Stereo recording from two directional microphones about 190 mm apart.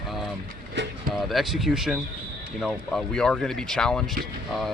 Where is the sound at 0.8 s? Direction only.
65° right (ahead or behind).